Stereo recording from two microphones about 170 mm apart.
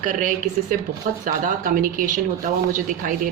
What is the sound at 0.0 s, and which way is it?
A woman's voice, 50° right (ahead or behind).